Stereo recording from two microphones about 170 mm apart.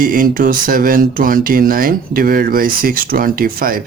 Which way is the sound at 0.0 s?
55° right (ahead or behind).